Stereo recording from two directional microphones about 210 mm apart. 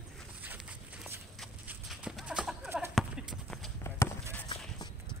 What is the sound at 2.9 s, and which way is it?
Clip-clop, centre (ahead or behind).